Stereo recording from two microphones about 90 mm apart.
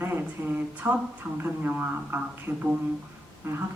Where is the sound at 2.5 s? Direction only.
35° right (ahead or behind).